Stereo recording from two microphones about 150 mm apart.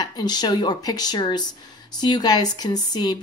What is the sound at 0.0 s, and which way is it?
A woman's voice, 25° left (ahead or behind).